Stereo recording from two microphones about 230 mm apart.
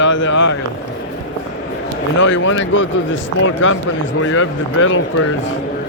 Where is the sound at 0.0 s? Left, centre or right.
Left.